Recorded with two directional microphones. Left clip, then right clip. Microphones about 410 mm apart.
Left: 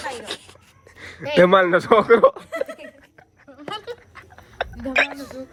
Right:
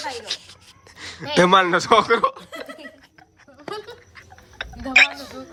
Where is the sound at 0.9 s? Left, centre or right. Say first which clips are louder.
Left 2 dB; centre.